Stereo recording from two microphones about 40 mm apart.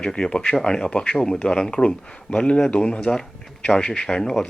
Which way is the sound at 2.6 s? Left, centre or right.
Left.